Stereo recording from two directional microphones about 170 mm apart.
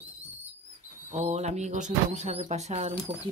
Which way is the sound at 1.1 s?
40° right (ahead or behind).